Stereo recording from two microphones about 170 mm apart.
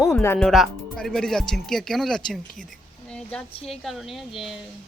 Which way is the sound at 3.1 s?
5° left (ahead or behind).